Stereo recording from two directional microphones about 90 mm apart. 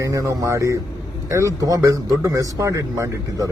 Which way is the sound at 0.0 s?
35° right (ahead or behind).